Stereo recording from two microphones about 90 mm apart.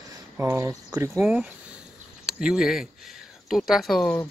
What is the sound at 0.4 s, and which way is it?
Speech, 30° right (ahead or behind).